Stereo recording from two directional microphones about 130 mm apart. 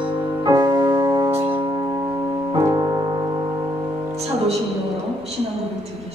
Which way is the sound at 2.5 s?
25° right (ahead or behind).